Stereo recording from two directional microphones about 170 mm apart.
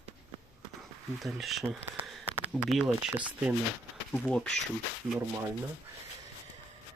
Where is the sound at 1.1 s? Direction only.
Centre (ahead or behind).